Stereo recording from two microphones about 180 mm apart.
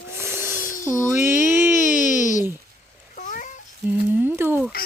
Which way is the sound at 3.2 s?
45° left (ahead or behind).